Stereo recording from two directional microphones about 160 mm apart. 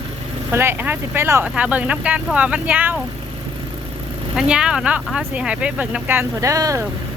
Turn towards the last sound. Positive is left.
turn(degrees=-20)  # may be behind; listen again after turning